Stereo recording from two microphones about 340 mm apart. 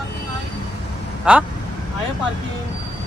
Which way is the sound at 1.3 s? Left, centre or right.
Centre.